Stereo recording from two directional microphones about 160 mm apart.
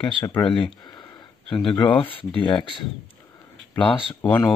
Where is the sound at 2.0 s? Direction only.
30° left (ahead or behind).